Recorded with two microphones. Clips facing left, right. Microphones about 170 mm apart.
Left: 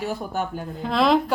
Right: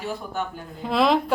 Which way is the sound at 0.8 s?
Centre (ahead or behind).